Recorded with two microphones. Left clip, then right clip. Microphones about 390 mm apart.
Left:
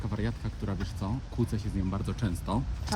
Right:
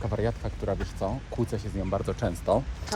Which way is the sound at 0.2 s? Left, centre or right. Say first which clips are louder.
Right 7 dB; centre.